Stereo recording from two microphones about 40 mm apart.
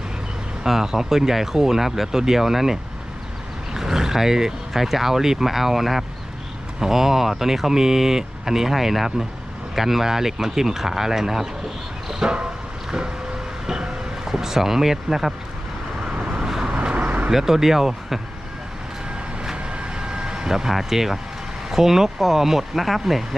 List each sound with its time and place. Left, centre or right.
0.6 s speech: centre
3.8 s speech: centre
12.2 s vehicle: right
13.7 s speech: centre
16.2 s vehicle: centre
16.8 s a sound: right
17.3 s speech: centre
19.5 s vehicle: right; by 21.2 s centre
21.7 s speech: centre